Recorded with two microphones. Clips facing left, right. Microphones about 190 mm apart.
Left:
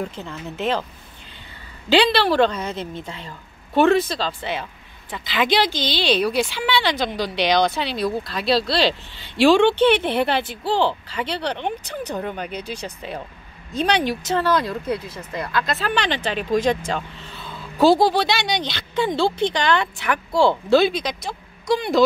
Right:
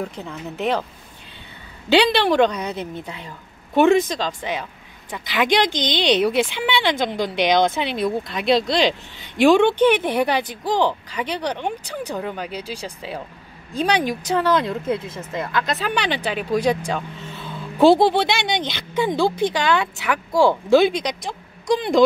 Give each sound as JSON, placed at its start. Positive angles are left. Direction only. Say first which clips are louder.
{"t": 0.1, "sound": "speech", "louder": "right 1 dB", "side_deg": 0}
{"t": 2.0, "sound": "speech", "louder": "right 1 dB", "side_deg": -15}